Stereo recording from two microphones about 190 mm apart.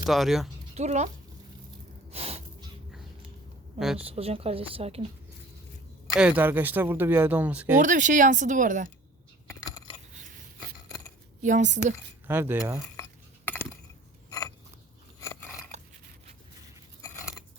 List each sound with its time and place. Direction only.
0.0 s speech: centre (ahead or behind)
0.7 s speech: 35° right (ahead or behind)
2.0 s snort: 30° right (ahead or behind)
3.8 s speech: centre (ahead or behind)
4.0 s speech: 30° right (ahead or behind)
6.1 s speech: 10° right (ahead or behind)
7.8 s speech: 40° right (ahead or behind)
9.5 s coin: 20° left (ahead or behind)
11.4 s speech: 40° right (ahead or behind)
12.3 s speech: 10° right (ahead or behind)
13.0 s dishes: 10° left (ahead or behind)
14.3 s a sound: 15° left (ahead or behind)